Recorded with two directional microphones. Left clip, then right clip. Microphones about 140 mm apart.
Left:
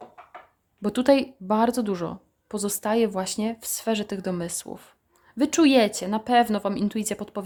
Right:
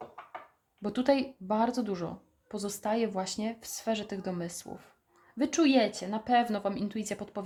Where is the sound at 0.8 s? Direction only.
55° left (ahead or behind).